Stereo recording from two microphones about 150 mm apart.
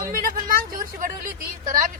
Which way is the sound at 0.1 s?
65° right (ahead or behind).